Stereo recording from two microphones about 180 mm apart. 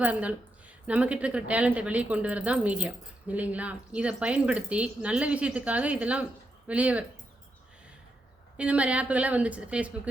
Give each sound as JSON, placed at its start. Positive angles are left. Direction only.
{"t": 0.0, "sound": "a woman's voice", "side_deg": -10}
{"t": 8.5, "sound": "a woman's voice", "side_deg": -5}